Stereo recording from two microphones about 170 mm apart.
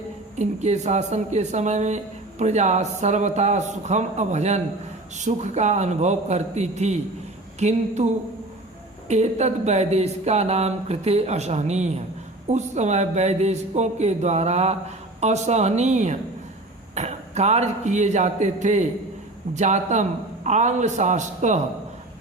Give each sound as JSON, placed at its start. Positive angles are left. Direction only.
{"t": 0.3, "sound": "a man's voice", "side_deg": -40}